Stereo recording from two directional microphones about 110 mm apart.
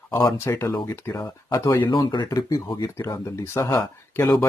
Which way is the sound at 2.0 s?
40° left (ahead or behind).